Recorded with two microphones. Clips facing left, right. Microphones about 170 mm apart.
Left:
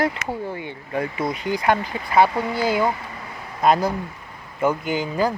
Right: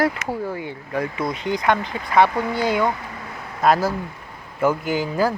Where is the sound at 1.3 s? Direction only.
5° left (ahead or behind).